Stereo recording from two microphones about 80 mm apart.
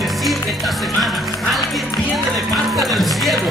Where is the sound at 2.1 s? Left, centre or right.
Centre.